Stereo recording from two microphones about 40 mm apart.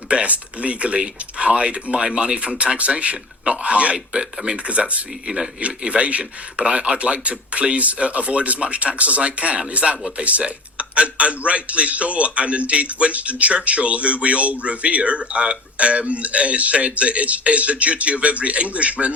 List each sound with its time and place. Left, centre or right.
0.1 s speech: right
3.9 s speech: centre
4.5 s a man's voice: right
5.2 s a man's voice: right